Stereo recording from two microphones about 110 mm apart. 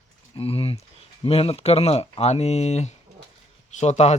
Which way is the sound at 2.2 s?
80° left.